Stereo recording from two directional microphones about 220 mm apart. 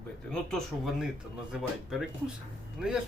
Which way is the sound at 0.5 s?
Centre (ahead or behind).